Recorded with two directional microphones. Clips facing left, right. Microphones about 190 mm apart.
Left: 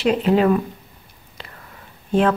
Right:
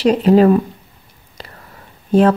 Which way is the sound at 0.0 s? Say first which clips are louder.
Right 6 dB; 40° right (ahead or behind).